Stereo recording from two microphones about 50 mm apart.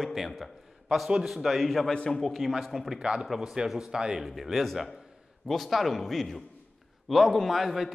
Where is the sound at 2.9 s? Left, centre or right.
Centre.